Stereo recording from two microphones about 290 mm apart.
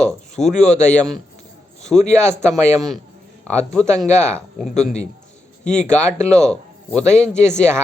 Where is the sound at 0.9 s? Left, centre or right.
Centre.